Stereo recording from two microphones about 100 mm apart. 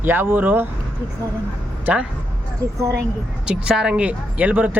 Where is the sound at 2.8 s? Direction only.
25° right (ahead or behind).